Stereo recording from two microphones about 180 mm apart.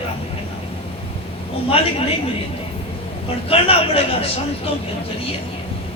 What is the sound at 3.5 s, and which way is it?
Speech, 30° left (ahead or behind).